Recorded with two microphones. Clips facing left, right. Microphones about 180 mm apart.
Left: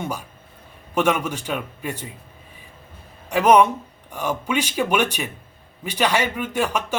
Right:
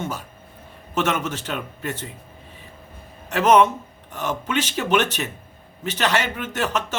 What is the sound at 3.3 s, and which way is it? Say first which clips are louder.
A man's voice: left 1 dB; 10° left (ahead or behind).